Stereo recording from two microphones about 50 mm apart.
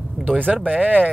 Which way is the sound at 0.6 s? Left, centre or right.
Right.